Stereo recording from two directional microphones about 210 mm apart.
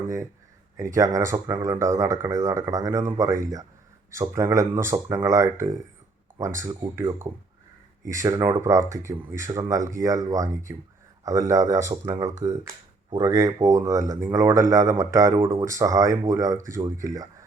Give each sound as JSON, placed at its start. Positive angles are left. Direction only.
{"t": 0.8, "sound": "speech", "side_deg": -15}